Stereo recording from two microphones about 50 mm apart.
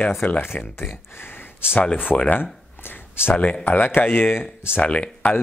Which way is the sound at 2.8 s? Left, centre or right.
Left.